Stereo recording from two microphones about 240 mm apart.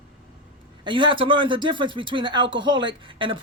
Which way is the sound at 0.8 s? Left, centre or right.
Centre.